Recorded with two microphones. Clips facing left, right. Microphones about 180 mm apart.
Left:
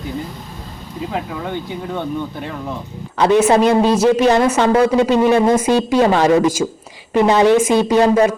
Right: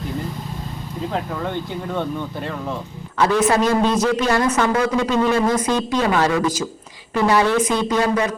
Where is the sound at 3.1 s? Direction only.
20° left (ahead or behind).